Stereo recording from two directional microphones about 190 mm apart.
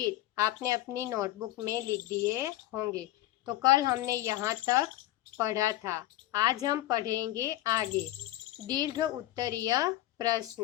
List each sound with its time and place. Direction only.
0.0 s a woman's voice: 15° right (ahead or behind)